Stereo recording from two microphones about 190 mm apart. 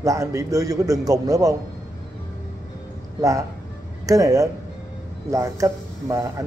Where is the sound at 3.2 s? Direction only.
15° right (ahead or behind).